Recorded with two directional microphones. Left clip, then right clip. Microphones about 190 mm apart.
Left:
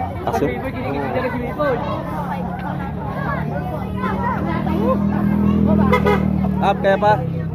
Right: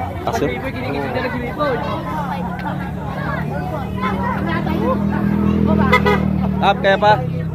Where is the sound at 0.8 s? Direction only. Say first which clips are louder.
Even; 55° right (ahead or behind).